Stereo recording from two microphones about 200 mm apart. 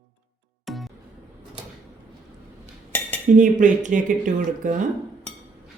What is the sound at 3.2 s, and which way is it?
Speech, 40° right (ahead or behind).